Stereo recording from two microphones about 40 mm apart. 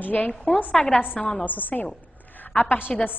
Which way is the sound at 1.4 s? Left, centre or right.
Left.